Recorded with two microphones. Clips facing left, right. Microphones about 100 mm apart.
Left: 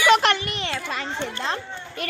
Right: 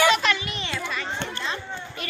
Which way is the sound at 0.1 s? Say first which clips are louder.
Left 5 dB; 60° left (ahead or behind).